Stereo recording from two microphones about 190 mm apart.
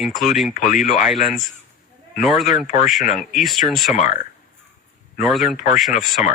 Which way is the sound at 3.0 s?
40° left (ahead or behind).